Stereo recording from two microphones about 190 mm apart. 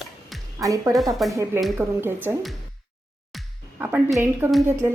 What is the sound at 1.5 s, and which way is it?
Speech, centre (ahead or behind).